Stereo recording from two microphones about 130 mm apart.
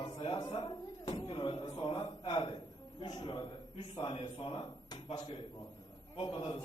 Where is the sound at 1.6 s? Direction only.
35° left (ahead or behind).